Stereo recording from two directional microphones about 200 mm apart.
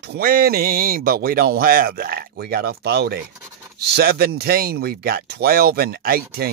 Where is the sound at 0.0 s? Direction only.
50° right (ahead or behind).